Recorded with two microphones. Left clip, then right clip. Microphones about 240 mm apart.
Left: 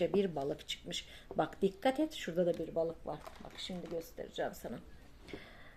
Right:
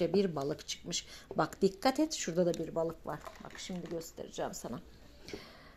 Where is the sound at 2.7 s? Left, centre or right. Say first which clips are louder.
Right 1 dB; right.